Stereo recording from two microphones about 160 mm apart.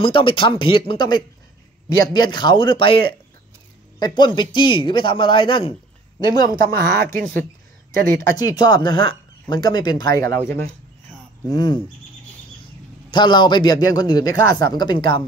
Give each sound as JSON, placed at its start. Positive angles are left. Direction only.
{"t": 0.0, "sound": "speech", "side_deg": 35}
{"t": 6.7, "sound": "speech", "side_deg": -65}
{"t": 8.4, "sound": "speech", "side_deg": 25}
{"t": 11.4, "sound": "speech", "side_deg": 25}
{"t": 13.1, "sound": "speech", "side_deg": 30}